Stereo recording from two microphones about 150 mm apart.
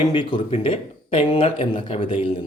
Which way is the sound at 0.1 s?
30° left (ahead or behind).